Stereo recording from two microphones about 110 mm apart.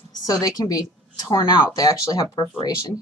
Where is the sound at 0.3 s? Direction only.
35° left (ahead or behind).